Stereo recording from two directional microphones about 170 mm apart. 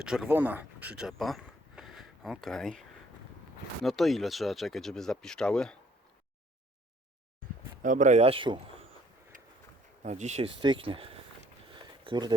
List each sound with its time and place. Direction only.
0.0 s speech: 5° right (ahead or behind)
3.8 s speech: centre (ahead or behind)
7.8 s speech: 50° right (ahead or behind); by 8.6 s 30° right (ahead or behind)
10.0 s speech: 45° right (ahead or behind)
11.7 s a sound: 30° right (ahead or behind)